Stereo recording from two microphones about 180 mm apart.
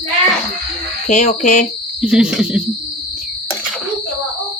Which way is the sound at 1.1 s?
40° left (ahead or behind).